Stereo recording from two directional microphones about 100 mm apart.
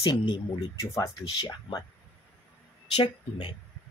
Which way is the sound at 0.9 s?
30° left (ahead or behind).